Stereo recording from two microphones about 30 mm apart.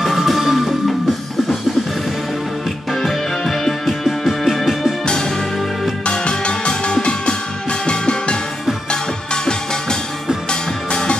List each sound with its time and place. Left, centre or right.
0.0 s music: centre
2.9 s music: centre
6.0 s music: left